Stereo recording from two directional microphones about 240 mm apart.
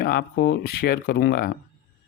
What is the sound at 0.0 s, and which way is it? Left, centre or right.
Speech, left.